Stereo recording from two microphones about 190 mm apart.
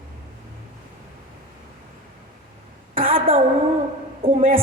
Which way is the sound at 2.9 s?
30° right (ahead or behind).